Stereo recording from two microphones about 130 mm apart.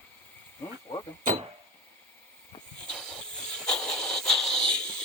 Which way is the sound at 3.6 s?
5° left (ahead or behind).